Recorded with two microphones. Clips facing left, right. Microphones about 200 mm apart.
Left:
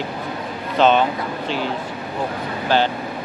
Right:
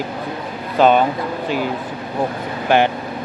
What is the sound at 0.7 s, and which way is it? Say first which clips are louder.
Speech: right 2 dB; 10° right (ahead or behind).